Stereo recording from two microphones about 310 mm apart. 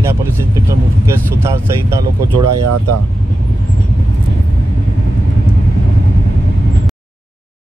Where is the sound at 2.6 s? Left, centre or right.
Right.